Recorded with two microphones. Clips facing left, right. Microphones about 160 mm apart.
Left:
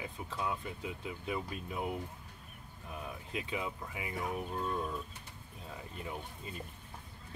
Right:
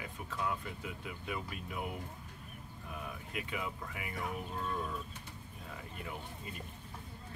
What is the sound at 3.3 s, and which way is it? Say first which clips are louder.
Speech: left 3 dB; 25° left (ahead or behind).